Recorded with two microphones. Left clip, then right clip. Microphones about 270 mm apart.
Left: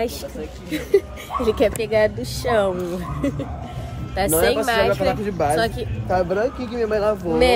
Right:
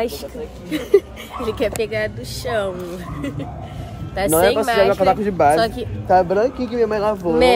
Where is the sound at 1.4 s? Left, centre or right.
Centre.